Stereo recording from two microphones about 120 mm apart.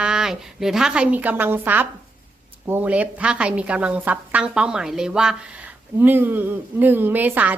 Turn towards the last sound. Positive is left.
turn(degrees=-15)  # may be behind; listen again after turning